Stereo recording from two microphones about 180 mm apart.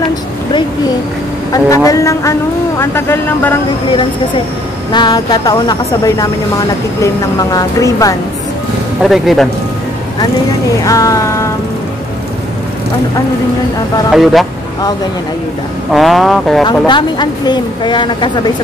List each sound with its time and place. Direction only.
1.5 s speech: 20° left (ahead or behind)
4.9 s speech: 25° left (ahead or behind)
9.0 s vehicle: centre (ahead or behind)
10.9 s speech: 20° left (ahead or behind)
14.1 s vehicle: centre (ahead or behind)
15.9 s vehicle: centre (ahead or behind)
16.6 s speech: 25° left (ahead or behind)